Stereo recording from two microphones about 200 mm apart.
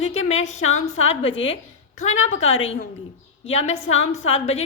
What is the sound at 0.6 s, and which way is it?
Speech, 90° left.